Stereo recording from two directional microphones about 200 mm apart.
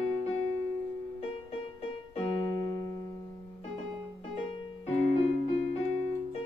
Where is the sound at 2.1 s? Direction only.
20° left (ahead or behind).